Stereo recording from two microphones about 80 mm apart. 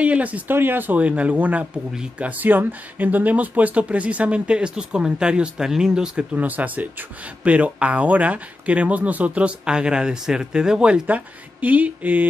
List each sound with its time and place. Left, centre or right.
0.0 s speech: centre
6.3 s speech: right